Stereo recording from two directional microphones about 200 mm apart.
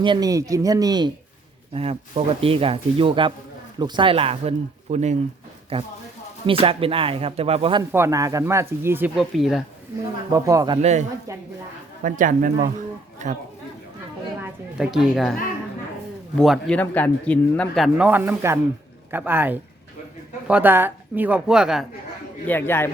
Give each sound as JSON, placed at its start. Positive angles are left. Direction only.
{"t": 0.0, "sound": "speech", "side_deg": -20}
{"t": 1.7, "sound": "speech", "side_deg": -30}
{"t": 7.9, "sound": "speech", "side_deg": -15}
{"t": 10.3, "sound": "speech", "side_deg": -15}
{"t": 10.8, "sound": "speech", "side_deg": -35}
{"t": 11.3, "sound": "speech", "side_deg": -15}
{"t": 12.0, "sound": "speech", "side_deg": -40}
{"t": 14.4, "sound": "a woman's voice", "side_deg": -5}
{"t": 16.4, "sound": "a man's voice", "side_deg": 5}
{"t": 22.4, "sound": "a man's voice", "side_deg": 10}